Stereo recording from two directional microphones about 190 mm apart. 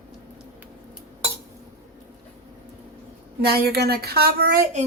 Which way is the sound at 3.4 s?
55° right (ahead or behind).